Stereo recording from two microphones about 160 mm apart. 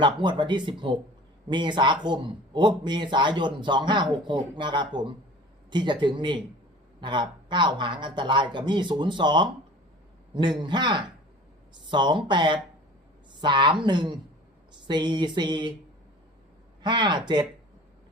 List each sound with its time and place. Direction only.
0.0 s speech: 30° right (ahead or behind)
16.8 s speech: 30° right (ahead or behind)